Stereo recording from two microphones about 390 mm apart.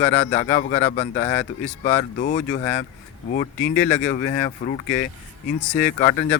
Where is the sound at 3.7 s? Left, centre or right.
Centre.